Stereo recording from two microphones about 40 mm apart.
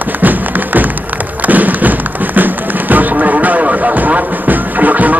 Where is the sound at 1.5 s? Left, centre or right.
Right.